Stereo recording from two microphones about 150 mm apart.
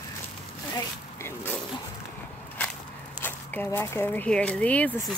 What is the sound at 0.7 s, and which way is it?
Zipper, 15° left (ahead or behind).